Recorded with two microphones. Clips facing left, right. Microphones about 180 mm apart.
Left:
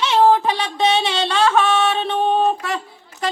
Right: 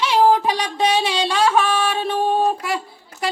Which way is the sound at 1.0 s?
10° right (ahead or behind).